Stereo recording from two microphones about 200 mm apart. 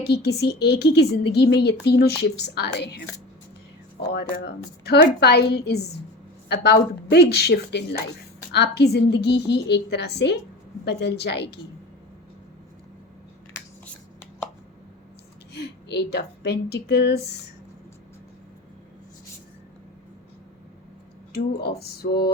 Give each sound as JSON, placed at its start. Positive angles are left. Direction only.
{"t": 0.0, "sound": "speech", "side_deg": 55}
{"t": 4.0, "sound": "speech", "side_deg": 55}
{"t": 15.5, "sound": "speech", "side_deg": 55}
{"t": 21.3, "sound": "a sound", "side_deg": 55}